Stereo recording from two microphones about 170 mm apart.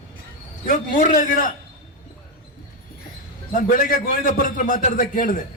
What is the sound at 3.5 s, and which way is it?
A man's voice, 55° left (ahead or behind).